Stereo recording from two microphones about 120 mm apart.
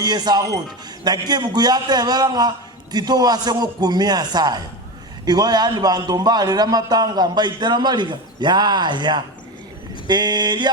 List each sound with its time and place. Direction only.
0.0 s a man's voice: 35° right (ahead or behind)